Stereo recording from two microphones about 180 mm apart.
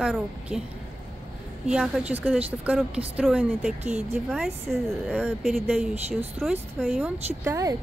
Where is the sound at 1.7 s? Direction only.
5° right (ahead or behind).